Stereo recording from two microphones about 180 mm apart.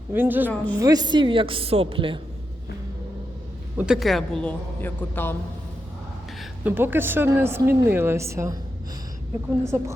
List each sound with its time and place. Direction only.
0.1 s speech: 10° right (ahead or behind)
0.8 s a woman's voice: 20° right (ahead or behind)
3.8 s a man's voice: 5° right (ahead or behind); by 5.4 s 10° left (ahead or behind)
6.4 s speech: 10° right (ahead or behind)
9.6 s speech: 15° right (ahead or behind)